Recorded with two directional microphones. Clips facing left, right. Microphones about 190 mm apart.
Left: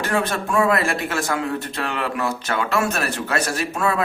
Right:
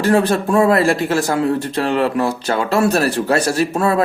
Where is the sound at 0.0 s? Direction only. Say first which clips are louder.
Right 8 dB; 35° right (ahead or behind).